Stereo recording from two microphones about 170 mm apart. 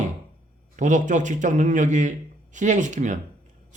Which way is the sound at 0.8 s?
45° right (ahead or behind).